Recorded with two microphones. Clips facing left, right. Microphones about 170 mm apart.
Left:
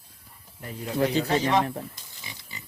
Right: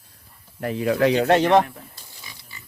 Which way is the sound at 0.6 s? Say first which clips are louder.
Right 7 dB; 85° right.